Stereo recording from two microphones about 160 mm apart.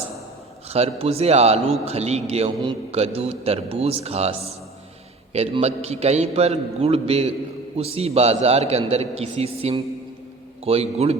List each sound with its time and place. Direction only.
0.7 s a man's voice: 40° right (ahead or behind)